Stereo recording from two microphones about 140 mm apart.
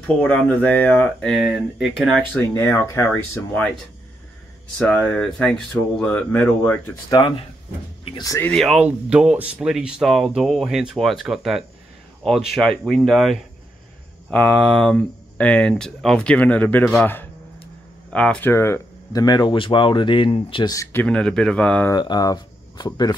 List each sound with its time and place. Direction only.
0.0 s speech: 10° left (ahead or behind)
1.3 s speech: 5° right (ahead or behind)
2.5 s speech: 15° left (ahead or behind)
4.7 s speech: 10° left (ahead or behind)
7.1 s speech: 35° left (ahead or behind)
8.2 s speech: 25° left (ahead or behind)
8.5 s speech: 5° left (ahead or behind); by 20.7 s 40° left (ahead or behind)
20.7 s speech: 20° left (ahead or behind)
21.0 s speech: 5° left (ahead or behind)
21.9 s speech: 30° left (ahead or behind)